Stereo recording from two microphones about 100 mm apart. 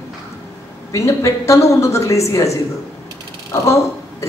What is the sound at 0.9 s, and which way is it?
Speech, 30° left (ahead or behind).